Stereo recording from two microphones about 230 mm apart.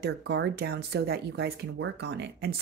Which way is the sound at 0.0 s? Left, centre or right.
Right.